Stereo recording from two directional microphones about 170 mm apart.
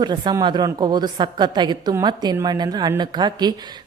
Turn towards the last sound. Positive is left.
turn(degrees=-25)  # may be behind; listen again after turning